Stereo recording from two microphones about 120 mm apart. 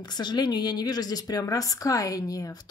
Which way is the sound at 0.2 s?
35° left (ahead or behind).